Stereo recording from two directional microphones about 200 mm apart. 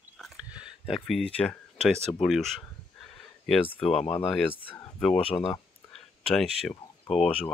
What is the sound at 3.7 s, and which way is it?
Speech, centre (ahead or behind).